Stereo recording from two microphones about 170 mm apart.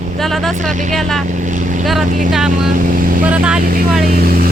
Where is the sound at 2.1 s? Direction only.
50° right (ahead or behind).